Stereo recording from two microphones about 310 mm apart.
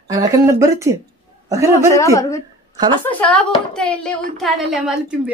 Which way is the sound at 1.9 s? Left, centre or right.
Centre.